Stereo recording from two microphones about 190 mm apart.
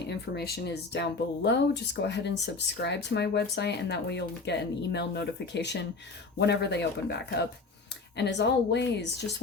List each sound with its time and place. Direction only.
0.1 s speech: 55° left (ahead or behind)